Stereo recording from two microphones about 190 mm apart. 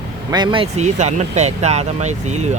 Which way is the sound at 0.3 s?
20° right (ahead or behind).